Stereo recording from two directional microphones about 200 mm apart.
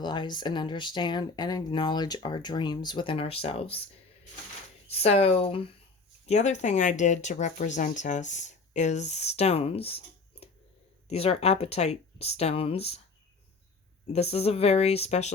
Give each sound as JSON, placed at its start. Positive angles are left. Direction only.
{"t": 0.0, "sound": "speech", "side_deg": 20}
{"t": 4.9, "sound": "speech", "side_deg": 30}
{"t": 11.1, "sound": "speech", "side_deg": 30}
{"t": 14.1, "sound": "speech", "side_deg": 30}